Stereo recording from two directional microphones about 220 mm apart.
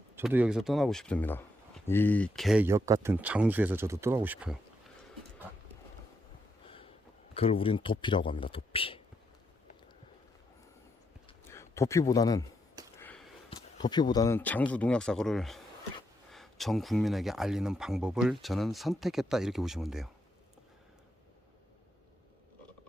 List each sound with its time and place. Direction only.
0.2 s speech: 5° right (ahead or behind)
6.7 s sniff: 25° left (ahead or behind)
7.3 s a man's voice: 25° left (ahead or behind)
11.4 s a man's voice: 10° left (ahead or behind)
13.0 s a sound: 5° left (ahead or behind)
13.5 s speech: 20° left (ahead or behind); by 20.1 s centre (ahead or behind)